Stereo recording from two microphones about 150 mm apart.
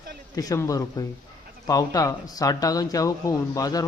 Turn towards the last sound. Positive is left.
turn(degrees=25)  # may be behind; listen again after turning